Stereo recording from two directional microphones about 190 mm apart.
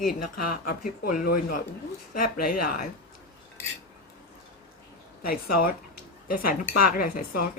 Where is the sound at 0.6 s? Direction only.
45° left (ahead or behind).